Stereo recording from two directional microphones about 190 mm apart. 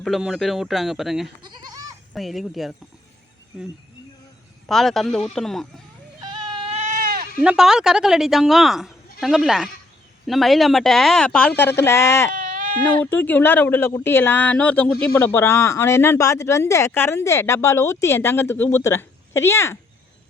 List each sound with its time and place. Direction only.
0.0 s speech: centre (ahead or behind)
4.7 s speech: centre (ahead or behind)
6.1 s goat: 25° right (ahead or behind); by 7.3 s 50° right (ahead or behind)
7.4 s speech: 5° right (ahead or behind); by 12.3 s 15° left (ahead or behind)
12.3 s sheep: 45° right (ahead or behind)
13.1 s speech: 10° left (ahead or behind)